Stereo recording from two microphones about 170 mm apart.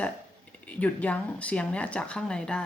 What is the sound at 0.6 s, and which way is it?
Speech, 10° left (ahead or behind).